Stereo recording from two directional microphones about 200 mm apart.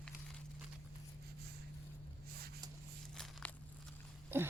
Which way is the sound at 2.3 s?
50° right (ahead or behind).